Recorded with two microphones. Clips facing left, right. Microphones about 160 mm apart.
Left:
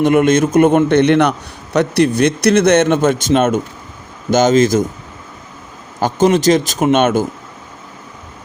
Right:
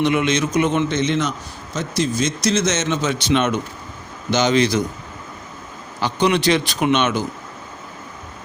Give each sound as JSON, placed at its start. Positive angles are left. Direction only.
{"t": 0.0, "sound": "a man's voice", "side_deg": 50}
{"t": 6.0, "sound": "speech", "side_deg": 45}